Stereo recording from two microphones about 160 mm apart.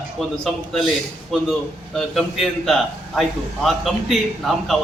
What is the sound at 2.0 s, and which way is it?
A man's voice, centre (ahead or behind).